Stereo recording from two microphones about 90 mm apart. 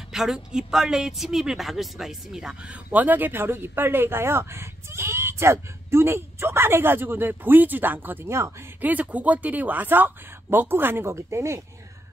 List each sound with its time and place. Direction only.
0.1 s a woman's voice: 5° right (ahead or behind); by 8.5 s 25° right (ahead or behind)
8.8 s a woman's voice: 15° right (ahead or behind)